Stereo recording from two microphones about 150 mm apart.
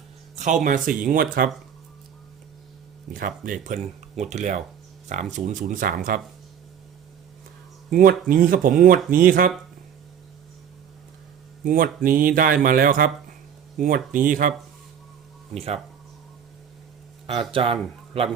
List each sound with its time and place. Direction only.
0.3 s speech: 55° right (ahead or behind); by 1.5 s 70° right (ahead or behind)
3.1 s speech: 65° right (ahead or behind)
7.9 s speech: 65° right (ahead or behind)
11.6 s speech: 70° right (ahead or behind)
17.5 s speech: 40° right (ahead or behind)